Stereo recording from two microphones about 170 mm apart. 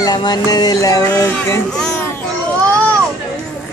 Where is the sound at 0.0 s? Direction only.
25° left (ahead or behind).